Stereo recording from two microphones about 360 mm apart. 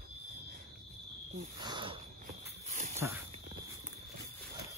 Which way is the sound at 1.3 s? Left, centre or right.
Centre.